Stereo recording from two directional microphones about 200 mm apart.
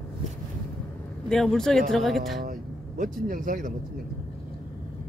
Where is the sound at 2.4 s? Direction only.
45° right (ahead or behind).